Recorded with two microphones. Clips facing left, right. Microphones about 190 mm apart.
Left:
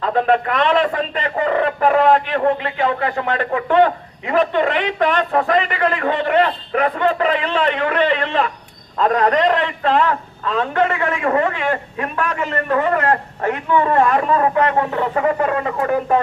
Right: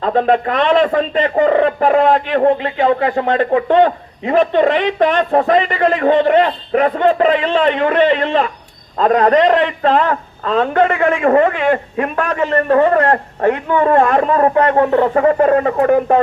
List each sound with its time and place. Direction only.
0.0 s a man's voice: 30° right (ahead or behind)